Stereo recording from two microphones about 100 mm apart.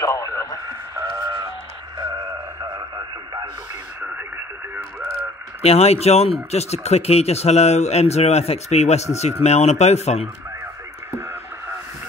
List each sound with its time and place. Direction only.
0.0 s radio: 30° left (ahead or behind)
0.7 s a sound: 35° right (ahead or behind)
5.6 s speech: 90° left